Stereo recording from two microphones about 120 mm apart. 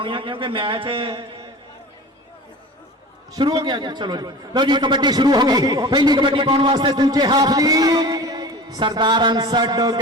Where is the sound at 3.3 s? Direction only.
35° right (ahead or behind).